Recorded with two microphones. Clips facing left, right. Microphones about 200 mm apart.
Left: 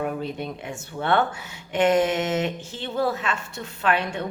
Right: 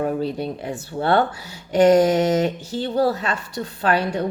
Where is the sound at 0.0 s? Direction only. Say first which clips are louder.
Right 5 dB; 35° right (ahead or behind).